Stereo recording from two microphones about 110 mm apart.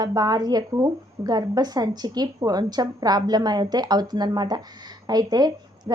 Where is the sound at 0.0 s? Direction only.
35° right (ahead or behind).